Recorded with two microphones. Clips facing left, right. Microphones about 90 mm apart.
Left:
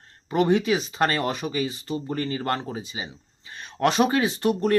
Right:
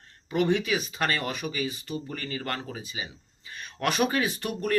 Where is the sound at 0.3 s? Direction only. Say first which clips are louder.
Left 4 dB; 35° left (ahead or behind).